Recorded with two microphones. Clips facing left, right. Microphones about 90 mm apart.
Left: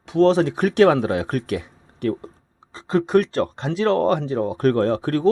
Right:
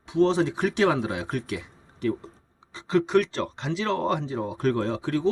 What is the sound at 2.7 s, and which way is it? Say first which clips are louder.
Speech: left 3 dB; 45° left (ahead or behind).